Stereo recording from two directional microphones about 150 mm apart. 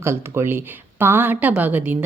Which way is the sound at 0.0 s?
15° right (ahead or behind).